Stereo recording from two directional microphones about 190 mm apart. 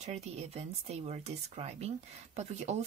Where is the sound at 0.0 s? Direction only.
35° right (ahead or behind).